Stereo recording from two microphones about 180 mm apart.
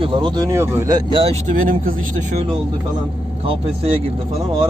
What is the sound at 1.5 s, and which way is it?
Speech, 50° right (ahead or behind).